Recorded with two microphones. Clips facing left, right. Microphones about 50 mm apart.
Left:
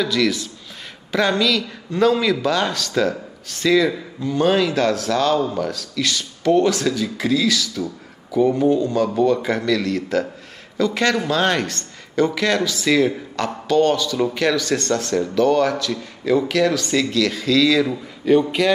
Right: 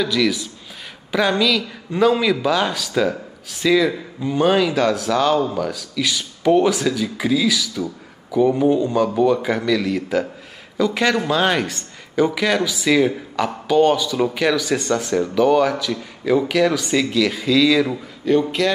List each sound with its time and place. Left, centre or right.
0.0 s speech: centre
4.2 s speech: centre
4.6 s speech: centre
8.6 s a man's voice: centre
9.1 s speech: centre
18.2 s speech: centre